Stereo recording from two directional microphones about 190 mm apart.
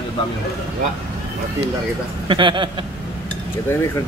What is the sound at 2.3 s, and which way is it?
Speech, 25° right (ahead or behind).